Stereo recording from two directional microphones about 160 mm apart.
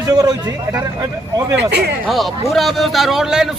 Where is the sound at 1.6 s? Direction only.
90° right.